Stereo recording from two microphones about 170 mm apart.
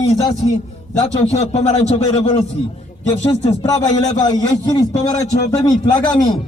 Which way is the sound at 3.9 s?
45° left (ahead or behind).